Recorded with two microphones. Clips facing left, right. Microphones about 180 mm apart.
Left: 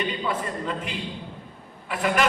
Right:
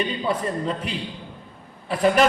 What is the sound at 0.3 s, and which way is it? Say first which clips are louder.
A man's voice: right 4 dB; 35° right (ahead or behind).